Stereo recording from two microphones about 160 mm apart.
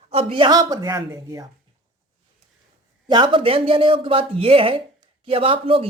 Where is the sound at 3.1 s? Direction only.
30° right (ahead or behind).